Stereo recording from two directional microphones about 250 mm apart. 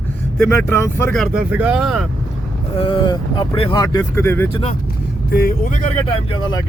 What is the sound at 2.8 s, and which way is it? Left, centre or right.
Speech, left.